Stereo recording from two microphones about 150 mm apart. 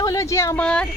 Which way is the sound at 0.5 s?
5° left (ahead or behind).